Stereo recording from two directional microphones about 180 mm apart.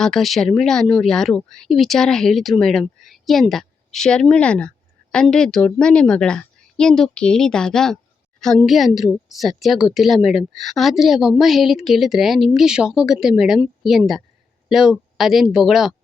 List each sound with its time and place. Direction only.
0.0 s a woman's voice: centre (ahead or behind)